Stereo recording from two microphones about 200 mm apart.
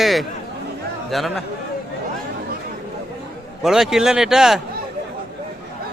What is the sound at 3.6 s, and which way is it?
Speech, centre (ahead or behind).